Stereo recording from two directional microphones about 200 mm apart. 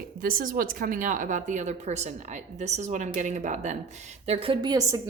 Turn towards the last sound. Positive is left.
turn(degrees=-15)  # may be behind; listen again after turning